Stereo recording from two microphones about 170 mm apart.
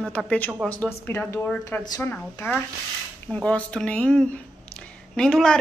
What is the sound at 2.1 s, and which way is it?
A woman's voice, 10° left (ahead or behind).